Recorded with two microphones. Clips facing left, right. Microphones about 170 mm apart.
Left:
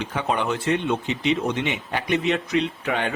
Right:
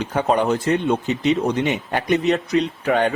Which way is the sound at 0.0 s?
40° right (ahead or behind).